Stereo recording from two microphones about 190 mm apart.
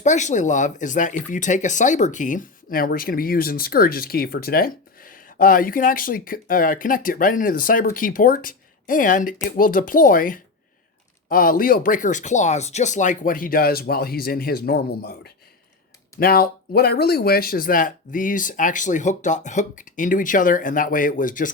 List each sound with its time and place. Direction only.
0.0 s speech: 40° left (ahead or behind)